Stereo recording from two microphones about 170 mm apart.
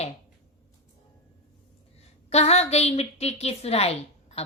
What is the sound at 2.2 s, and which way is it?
A woman's voice, 40° left (ahead or behind).